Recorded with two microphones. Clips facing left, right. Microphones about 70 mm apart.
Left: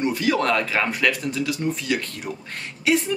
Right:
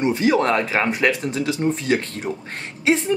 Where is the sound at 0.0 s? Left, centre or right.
Right.